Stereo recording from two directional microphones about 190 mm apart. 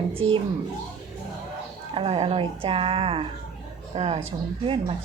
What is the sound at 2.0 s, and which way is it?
A woman's voice, 30° right (ahead or behind).